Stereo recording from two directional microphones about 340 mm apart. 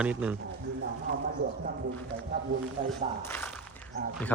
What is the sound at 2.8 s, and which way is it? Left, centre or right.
Speech, centre.